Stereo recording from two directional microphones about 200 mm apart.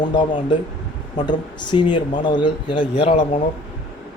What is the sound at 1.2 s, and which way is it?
A man's voice, 20° left (ahead or behind).